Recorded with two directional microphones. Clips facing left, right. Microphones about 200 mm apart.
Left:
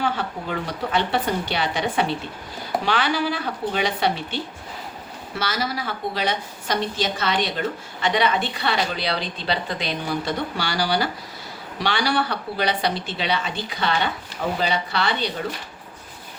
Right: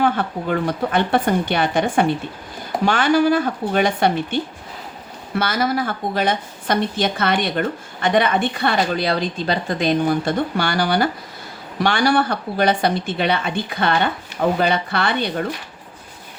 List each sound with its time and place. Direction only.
0.0 s speech: 50° right (ahead or behind)
5.4 s speech: 55° right (ahead or behind)